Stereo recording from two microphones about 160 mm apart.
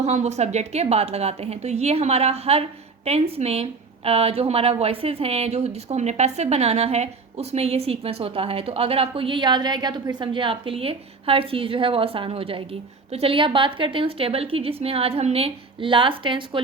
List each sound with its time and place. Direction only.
0.0 s a woman's voice: 45° right (ahead or behind)